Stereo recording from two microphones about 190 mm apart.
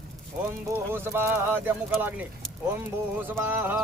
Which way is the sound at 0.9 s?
10° right (ahead or behind).